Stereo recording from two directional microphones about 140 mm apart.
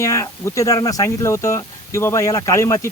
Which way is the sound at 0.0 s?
20° left (ahead or behind).